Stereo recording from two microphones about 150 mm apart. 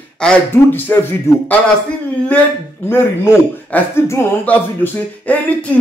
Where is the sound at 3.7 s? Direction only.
15° left (ahead or behind).